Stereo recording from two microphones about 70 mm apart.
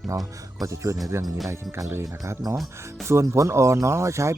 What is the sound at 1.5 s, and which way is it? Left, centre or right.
Speech, right.